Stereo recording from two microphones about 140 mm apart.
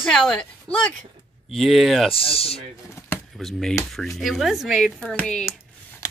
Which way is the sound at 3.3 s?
Centre (ahead or behind).